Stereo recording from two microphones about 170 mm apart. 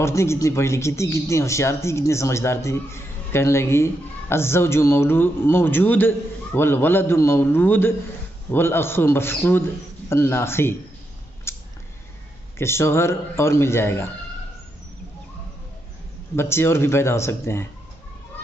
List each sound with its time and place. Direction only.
0.0 s speech: 15° left (ahead or behind)
11.5 s a sound: 15° left (ahead or behind)
12.5 s speech: 15° left (ahead or behind)
16.3 s speech: 15° left (ahead or behind)